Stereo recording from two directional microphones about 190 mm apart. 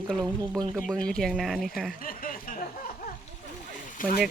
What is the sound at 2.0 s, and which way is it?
Snicker, 50° left (ahead or behind).